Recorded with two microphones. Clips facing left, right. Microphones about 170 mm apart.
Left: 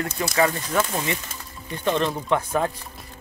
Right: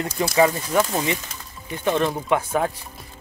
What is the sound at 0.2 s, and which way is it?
Speech, 20° right (ahead or behind).